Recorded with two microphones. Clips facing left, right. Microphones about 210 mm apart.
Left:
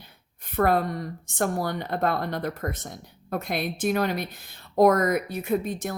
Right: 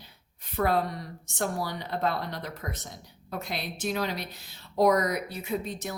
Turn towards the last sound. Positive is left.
turn(degrees=50)  # may be behind; listen again after turning